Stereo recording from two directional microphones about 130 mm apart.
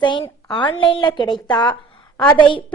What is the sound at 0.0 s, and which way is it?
A woman's voice, 35° left (ahead or behind).